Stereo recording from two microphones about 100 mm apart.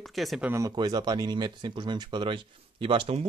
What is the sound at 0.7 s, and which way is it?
Speech, 45° right (ahead or behind).